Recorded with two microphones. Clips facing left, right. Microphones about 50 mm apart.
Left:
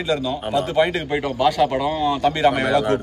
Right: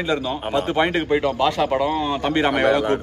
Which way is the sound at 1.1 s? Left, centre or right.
Centre.